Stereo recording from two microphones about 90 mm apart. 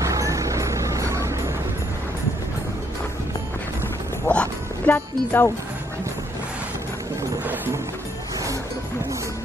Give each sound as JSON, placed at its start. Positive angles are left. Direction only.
{"t": 0.0, "sound": "music", "side_deg": -35}
{"t": 4.3, "sound": "music", "side_deg": 10}
{"t": 4.9, "sound": "speech", "side_deg": 25}
{"t": 7.4, "sound": "music", "side_deg": -25}